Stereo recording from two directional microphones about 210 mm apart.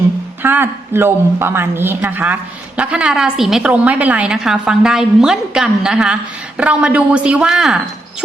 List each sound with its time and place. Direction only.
0.4 s speech: 10° right (ahead or behind)